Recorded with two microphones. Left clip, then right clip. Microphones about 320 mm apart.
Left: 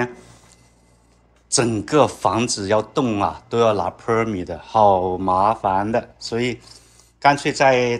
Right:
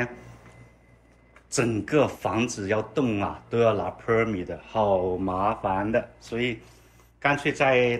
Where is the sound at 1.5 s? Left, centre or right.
Centre.